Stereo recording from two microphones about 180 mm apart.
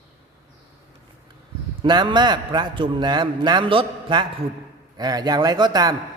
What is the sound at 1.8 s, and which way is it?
A man's voice, 25° right (ahead or behind).